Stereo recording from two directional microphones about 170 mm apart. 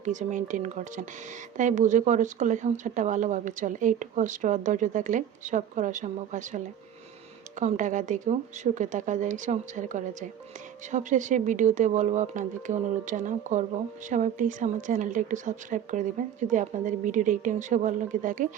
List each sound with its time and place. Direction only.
0.0 s speech: 45° right (ahead or behind)